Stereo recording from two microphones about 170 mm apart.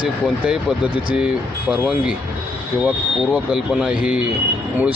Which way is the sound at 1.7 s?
10° right (ahead or behind).